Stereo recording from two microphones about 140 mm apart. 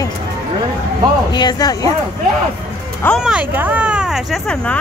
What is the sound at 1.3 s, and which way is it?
Speech, 30° left (ahead or behind).